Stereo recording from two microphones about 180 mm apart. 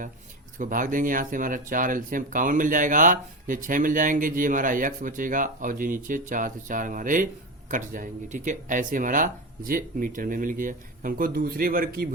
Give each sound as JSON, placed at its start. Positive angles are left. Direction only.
{"t": 0.6, "sound": "speech", "side_deg": -45}